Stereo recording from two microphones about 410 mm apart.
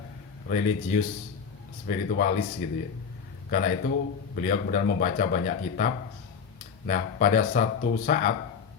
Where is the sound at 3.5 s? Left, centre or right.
Left.